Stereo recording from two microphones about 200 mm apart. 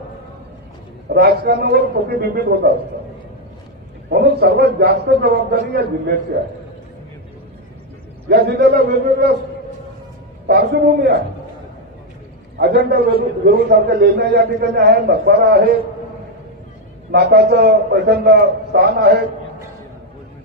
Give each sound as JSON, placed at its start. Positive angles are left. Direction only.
{"t": 1.0, "sound": "a man's voice", "side_deg": -50}
{"t": 4.1, "sound": "a man's voice", "side_deg": -50}
{"t": 8.3, "sound": "a man's voice", "side_deg": -50}
{"t": 10.4, "sound": "a man's voice", "side_deg": -55}
{"t": 12.5, "sound": "a man's voice", "side_deg": -55}
{"t": 17.1, "sound": "a man's voice", "side_deg": -55}